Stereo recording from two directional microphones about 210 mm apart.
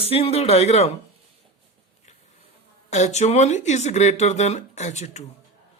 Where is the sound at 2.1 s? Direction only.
30° left (ahead or behind).